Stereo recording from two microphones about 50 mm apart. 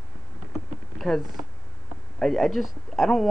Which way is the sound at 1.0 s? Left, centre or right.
Centre.